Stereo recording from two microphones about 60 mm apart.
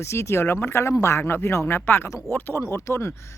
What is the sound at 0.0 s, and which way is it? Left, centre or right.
Speech, left.